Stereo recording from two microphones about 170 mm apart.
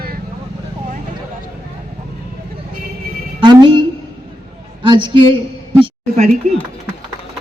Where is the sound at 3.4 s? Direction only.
25° right (ahead or behind).